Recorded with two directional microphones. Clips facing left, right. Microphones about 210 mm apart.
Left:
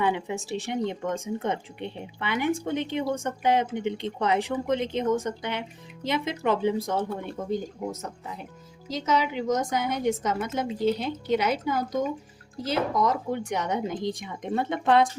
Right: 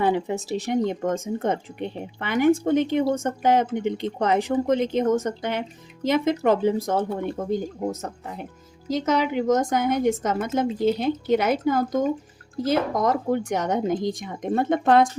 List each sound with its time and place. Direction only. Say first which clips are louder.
0.0 s speech: right 4 dB; 40° right (ahead or behind)